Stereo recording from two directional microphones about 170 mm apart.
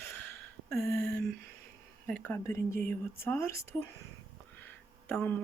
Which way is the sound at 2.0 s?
10° left (ahead or behind).